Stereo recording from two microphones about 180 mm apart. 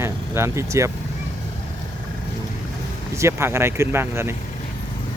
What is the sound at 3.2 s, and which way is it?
Speech, 15° right (ahead or behind).